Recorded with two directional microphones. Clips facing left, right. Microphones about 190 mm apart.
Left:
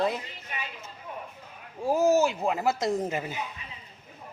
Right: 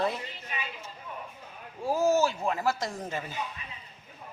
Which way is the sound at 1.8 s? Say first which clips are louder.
Left 3 dB; 20° left (ahead or behind).